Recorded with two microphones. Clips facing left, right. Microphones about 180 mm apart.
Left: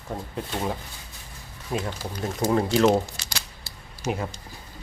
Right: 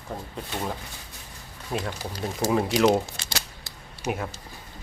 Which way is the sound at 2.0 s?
10° right (ahead or behind).